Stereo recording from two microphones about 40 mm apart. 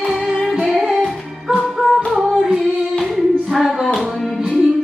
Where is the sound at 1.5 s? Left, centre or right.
Left.